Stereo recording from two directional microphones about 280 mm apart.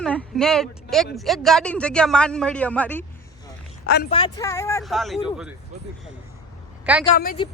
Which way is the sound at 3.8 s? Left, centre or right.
Left.